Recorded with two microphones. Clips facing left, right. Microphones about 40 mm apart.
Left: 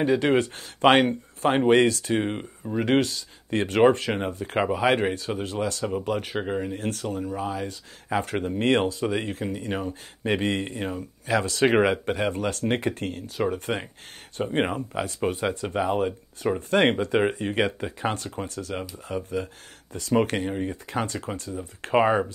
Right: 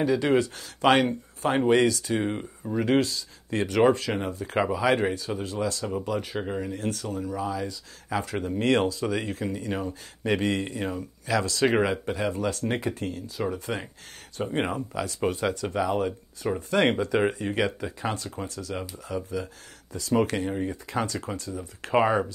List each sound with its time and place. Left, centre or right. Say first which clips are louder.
0.0 s speech: left 1 dB; left
6.4 s speech: left 3 dB; left
6.7 s speech: left 1 dB; left
15.4 s speech: left 1 dB; left